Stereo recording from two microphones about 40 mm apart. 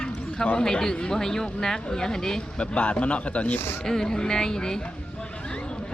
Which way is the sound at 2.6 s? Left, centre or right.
Left.